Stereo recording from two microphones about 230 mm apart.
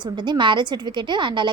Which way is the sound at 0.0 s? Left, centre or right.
Centre.